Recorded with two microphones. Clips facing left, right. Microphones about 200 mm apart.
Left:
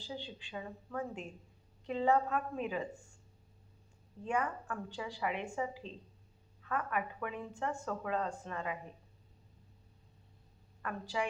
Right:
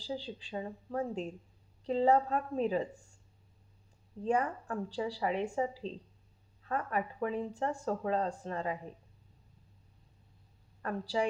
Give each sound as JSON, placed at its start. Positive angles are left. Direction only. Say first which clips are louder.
{"t": 0.0, "sound": "speech", "louder": "right 5 dB", "side_deg": -35}
{"t": 4.2, "sound": "speech", "louder": "right 4 dB", "side_deg": -35}
{"t": 10.8, "sound": "speech", "louder": "right 4 dB", "side_deg": -35}